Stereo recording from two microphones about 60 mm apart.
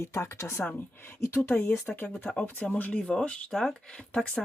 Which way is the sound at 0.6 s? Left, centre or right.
Left.